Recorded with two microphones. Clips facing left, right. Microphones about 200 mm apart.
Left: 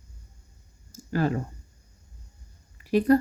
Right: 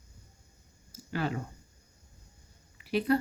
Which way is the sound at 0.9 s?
45° left (ahead or behind).